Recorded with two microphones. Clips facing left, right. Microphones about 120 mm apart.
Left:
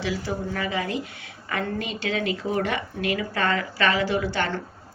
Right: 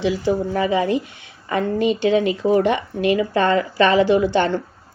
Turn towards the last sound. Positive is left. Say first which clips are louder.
# right 9 dB
turn(degrees=-20)  # may be behind; listen again after turning